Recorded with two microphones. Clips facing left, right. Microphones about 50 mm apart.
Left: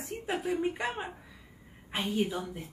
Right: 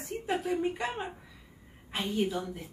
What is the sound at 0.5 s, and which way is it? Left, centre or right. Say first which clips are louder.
A woman's voice: even; centre.